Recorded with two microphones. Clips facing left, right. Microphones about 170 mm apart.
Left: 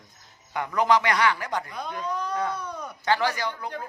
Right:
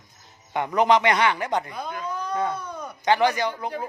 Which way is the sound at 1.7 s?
Centre (ahead or behind).